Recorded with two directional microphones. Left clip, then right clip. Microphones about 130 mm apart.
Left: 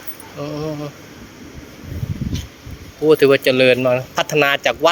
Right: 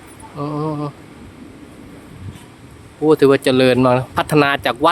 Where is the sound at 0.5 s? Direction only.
35° right (ahead or behind).